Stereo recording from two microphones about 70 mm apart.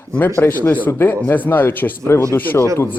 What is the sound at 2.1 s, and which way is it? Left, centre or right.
Speech, left.